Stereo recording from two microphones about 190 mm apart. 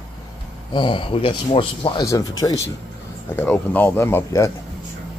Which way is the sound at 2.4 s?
15° left (ahead or behind).